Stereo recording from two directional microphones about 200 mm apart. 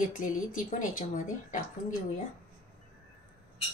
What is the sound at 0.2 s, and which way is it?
A woman's voice, 40° left (ahead or behind).